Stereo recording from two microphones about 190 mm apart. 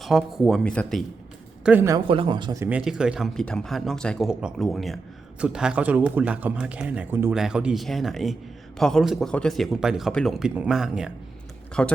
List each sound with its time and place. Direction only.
0.0 s speech: centre (ahead or behind)
1.6 s speech: 10° right (ahead or behind)
2.0 s speech: 30° right (ahead or behind)
2.6 s speech: 5° right (ahead or behind)